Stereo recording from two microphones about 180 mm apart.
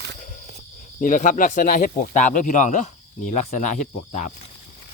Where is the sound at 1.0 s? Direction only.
45° left (ahead or behind).